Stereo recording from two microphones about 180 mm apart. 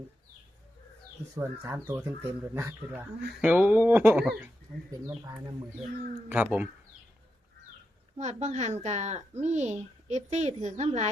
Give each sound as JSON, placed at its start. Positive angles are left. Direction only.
{"t": 1.4, "sound": "speech", "side_deg": -15}
{"t": 5.2, "sound": "speech", "side_deg": -25}
{"t": 6.2, "sound": "speech", "side_deg": -10}
{"t": 8.2, "sound": "a woman's voice", "side_deg": -40}